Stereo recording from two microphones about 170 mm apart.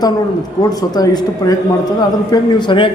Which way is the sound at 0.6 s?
20° left (ahead or behind).